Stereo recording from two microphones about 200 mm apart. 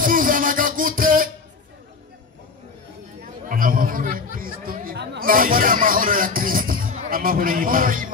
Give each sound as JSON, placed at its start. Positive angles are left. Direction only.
{"t": 0.0, "sound": "music", "side_deg": -45}
{"t": 3.4, "sound": "chatter", "side_deg": -45}